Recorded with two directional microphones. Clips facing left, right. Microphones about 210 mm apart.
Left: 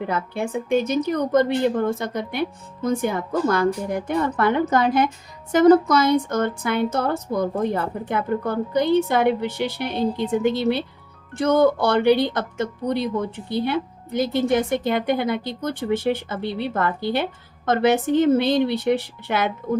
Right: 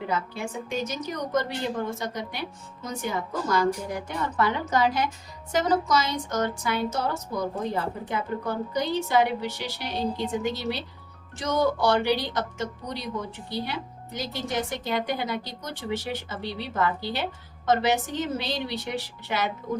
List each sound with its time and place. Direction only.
0.1 s a woman's voice: 55° left (ahead or behind)